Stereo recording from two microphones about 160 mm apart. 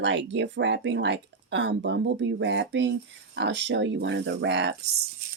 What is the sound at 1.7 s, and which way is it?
Speech, 90° right.